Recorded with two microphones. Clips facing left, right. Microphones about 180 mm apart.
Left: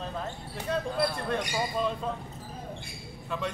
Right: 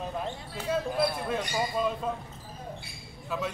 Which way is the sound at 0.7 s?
5° right (ahead or behind).